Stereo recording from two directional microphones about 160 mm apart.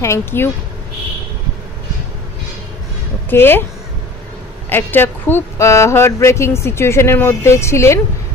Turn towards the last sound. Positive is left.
turn(degrees=15)  # may be behind; listen again after turning